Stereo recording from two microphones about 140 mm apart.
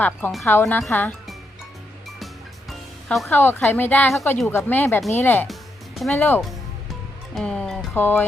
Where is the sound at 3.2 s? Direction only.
15° left (ahead or behind).